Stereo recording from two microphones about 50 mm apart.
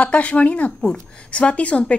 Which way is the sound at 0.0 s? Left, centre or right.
Left.